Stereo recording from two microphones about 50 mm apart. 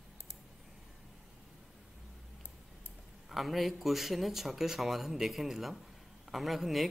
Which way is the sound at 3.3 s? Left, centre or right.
Centre.